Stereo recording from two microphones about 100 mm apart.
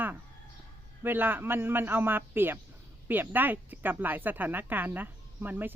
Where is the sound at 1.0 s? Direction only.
20° right (ahead or behind).